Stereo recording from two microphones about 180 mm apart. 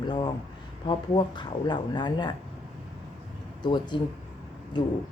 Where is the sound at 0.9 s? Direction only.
25° left (ahead or behind).